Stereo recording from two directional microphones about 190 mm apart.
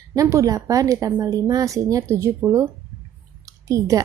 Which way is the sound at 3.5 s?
15° right (ahead or behind).